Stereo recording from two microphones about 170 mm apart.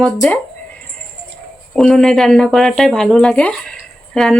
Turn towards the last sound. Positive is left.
turn(degrees=5)  # may be behind; listen again after turning